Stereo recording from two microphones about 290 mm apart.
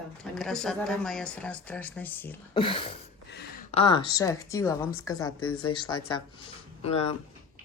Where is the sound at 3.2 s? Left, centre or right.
Left.